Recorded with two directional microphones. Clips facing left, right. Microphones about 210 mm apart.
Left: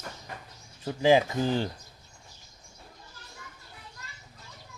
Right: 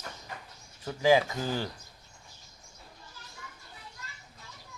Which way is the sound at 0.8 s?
25° left (ahead or behind).